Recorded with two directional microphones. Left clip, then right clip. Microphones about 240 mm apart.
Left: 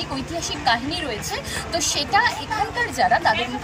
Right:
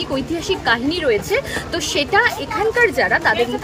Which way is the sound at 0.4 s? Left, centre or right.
Centre.